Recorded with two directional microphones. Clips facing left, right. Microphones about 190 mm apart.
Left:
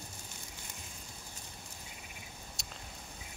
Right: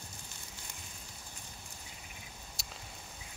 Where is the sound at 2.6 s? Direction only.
Centre (ahead or behind).